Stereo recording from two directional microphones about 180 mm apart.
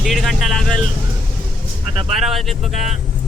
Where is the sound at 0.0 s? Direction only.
Centre (ahead or behind).